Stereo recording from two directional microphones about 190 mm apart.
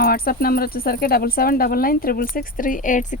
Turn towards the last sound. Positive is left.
turn(degrees=45)  # may be behind; listen again after turning